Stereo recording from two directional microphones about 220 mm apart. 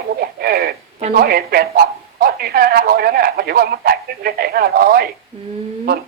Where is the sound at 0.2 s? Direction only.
45° right (ahead or behind).